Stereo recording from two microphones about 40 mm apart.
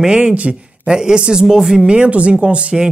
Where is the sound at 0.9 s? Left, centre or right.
Centre.